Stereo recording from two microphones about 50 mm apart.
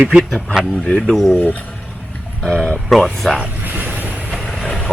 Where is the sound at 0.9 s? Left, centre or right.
Centre.